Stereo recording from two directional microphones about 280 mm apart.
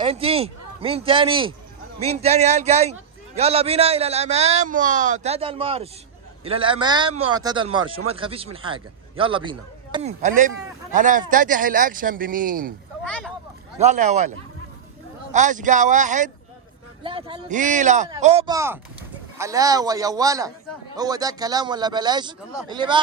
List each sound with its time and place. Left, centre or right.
0.0 s a man's voice: right
13.1 s vehicle: centre
13.7 s a man's voice: right